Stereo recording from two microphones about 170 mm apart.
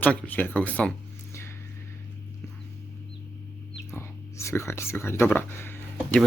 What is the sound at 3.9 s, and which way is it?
Speech, 15° left (ahead or behind).